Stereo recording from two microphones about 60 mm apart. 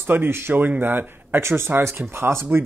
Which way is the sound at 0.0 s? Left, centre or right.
Right.